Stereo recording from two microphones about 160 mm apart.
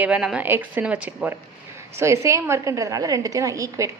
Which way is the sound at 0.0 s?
5° right (ahead or behind).